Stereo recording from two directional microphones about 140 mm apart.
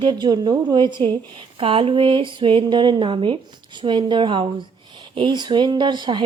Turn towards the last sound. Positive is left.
turn(degrees=-35)  # may be behind; listen again after turning